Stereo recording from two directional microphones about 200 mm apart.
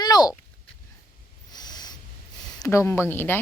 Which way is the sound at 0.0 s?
20° left (ahead or behind).